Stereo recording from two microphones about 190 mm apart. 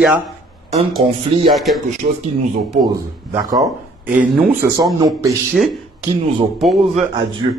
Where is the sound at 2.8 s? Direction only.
20° right (ahead or behind).